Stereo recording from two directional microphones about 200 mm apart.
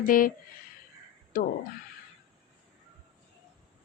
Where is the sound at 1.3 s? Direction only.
45° left (ahead or behind).